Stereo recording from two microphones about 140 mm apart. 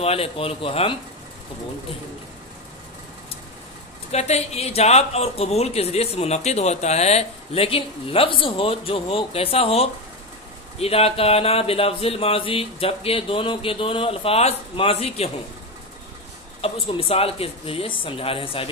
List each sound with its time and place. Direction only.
0.0 s speech: 45° left (ahead or behind)
4.1 s speech: 50° left (ahead or behind)
16.6 s speech: 45° left (ahead or behind)